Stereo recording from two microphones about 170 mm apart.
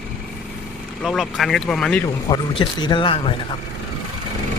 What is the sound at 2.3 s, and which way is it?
Speech, 25° left (ahead or behind).